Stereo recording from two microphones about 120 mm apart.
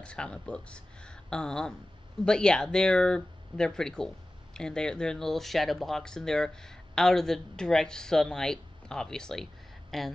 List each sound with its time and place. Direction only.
0.0 s speech: 10° left (ahead or behind)